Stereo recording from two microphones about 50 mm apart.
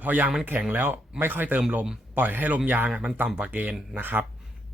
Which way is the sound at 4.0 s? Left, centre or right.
Right.